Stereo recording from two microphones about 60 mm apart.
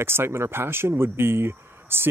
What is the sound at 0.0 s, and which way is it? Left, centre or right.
Speech, right.